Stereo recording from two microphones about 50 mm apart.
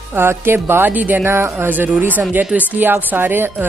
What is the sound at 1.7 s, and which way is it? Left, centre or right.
A woman's voice, right.